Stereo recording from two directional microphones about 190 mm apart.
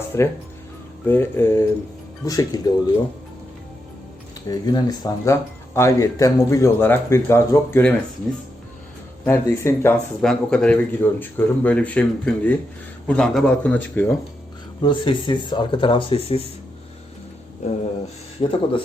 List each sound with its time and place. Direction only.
0.1 s speech: 15° left (ahead or behind)
4.4 s speech: 20° left (ahead or behind)
9.2 s speech: 10° left (ahead or behind)
14.8 s speech: 25° left (ahead or behind)
17.6 s a sound: 40° left (ahead or behind)
18.4 s speech: 30° left (ahead or behind)